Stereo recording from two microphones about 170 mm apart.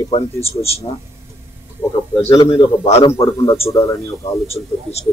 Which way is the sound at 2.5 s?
35° left (ahead or behind).